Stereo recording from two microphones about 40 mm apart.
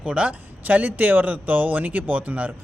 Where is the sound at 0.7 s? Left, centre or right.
Right.